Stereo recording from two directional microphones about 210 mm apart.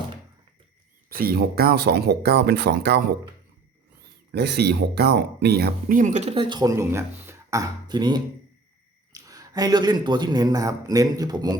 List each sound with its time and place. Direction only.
1.1 s speech: 45° right (ahead or behind)
4.3 s speech: 50° right (ahead or behind); by 11.5 s 20° right (ahead or behind)